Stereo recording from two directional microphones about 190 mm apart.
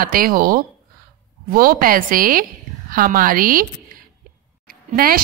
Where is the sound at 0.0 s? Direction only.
50° right (ahead or behind).